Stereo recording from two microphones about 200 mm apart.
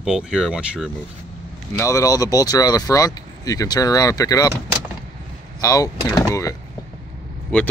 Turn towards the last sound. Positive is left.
turn(degrees=5)  # may be behind; listen again after turning